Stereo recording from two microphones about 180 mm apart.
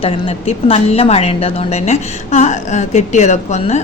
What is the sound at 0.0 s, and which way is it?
A woman's voice, 35° left (ahead or behind).